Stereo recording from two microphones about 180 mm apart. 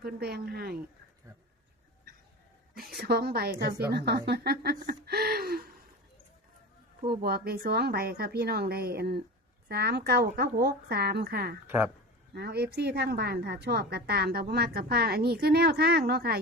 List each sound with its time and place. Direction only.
0.0 s a woman's voice: 60° right (ahead or behind)
2.7 s a woman's voice: 60° right (ahead or behind)
7.2 s a woman's voice: 60° right (ahead or behind)